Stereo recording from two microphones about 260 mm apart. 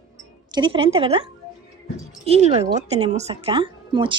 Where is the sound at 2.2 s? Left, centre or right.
Right.